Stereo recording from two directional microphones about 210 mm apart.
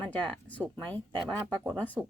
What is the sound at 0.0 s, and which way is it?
Speech, 5° left (ahead or behind).